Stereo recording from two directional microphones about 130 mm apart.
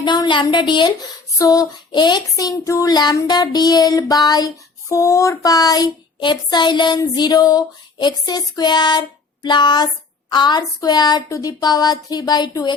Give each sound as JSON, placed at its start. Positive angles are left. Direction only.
{"t": 0.0, "sound": "child singing", "side_deg": 35}